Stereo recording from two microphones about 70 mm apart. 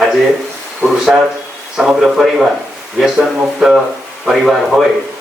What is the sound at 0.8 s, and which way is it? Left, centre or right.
A man's voice, centre.